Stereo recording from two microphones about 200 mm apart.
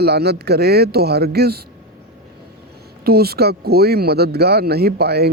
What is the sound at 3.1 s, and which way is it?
Speech, 50° right (ahead or behind).